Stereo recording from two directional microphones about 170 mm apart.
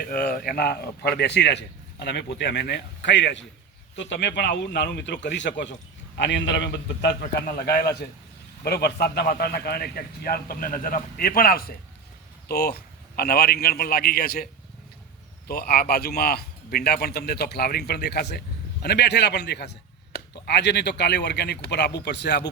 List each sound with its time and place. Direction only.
0.1 s a man's voice: 60° left (ahead or behind)
15.4 s a man's voice: 60° left (ahead or behind); by 22.4 s 80° left